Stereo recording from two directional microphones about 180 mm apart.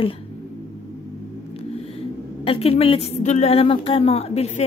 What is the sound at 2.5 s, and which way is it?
A woman's voice, 35° left (ahead or behind).